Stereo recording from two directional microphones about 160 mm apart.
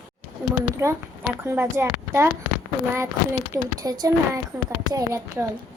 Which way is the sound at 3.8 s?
25° right (ahead or behind).